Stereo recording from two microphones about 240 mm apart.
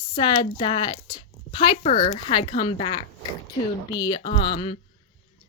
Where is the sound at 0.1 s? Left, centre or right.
Centre.